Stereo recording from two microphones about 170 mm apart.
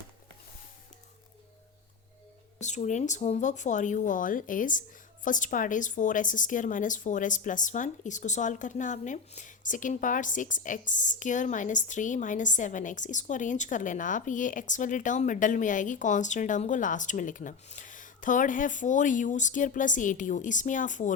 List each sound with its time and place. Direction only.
2.6 s a woman's voice: 45° left (ahead or behind)